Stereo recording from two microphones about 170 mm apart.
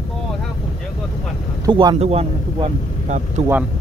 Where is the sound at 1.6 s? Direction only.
25° right (ahead or behind).